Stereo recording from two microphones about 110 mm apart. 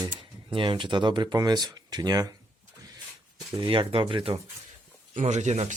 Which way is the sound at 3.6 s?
50° right (ahead or behind).